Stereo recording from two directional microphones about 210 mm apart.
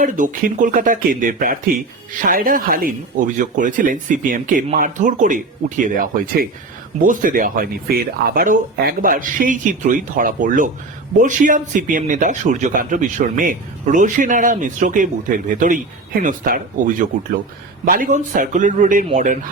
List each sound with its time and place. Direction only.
0.0 s speech: 40° right (ahead or behind)
17.8 s speech: 40° right (ahead or behind)